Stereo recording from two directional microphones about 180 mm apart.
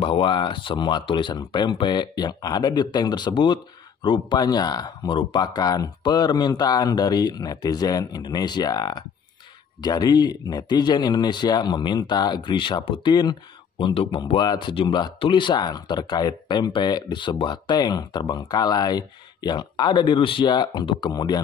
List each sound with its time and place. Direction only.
0.0 s speech: 30° left (ahead or behind)